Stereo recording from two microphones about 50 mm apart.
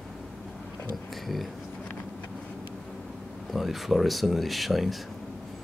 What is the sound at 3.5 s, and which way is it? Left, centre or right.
Speech, centre.